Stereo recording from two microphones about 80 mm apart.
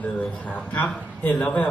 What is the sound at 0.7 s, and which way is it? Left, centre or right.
Speech, centre.